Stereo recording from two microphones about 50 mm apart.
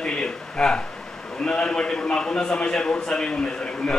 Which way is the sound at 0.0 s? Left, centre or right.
Centre.